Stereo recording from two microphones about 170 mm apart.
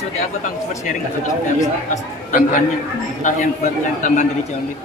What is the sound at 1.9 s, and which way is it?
A man's voice, 50° left (ahead or behind).